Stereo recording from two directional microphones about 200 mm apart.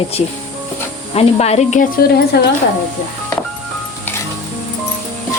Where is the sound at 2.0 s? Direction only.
55° left (ahead or behind).